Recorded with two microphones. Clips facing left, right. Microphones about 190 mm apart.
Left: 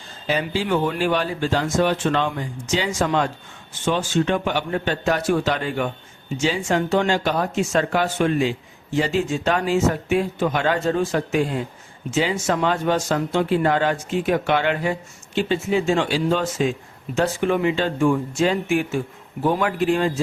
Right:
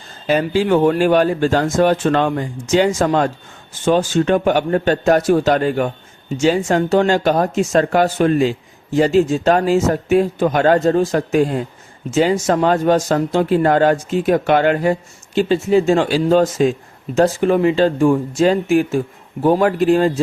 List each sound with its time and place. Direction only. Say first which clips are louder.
0.3 s speech: right 7 dB; 50° right (ahead or behind)